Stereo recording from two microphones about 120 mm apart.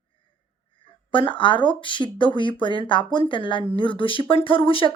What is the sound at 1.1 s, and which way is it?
Speech, 45° left (ahead or behind).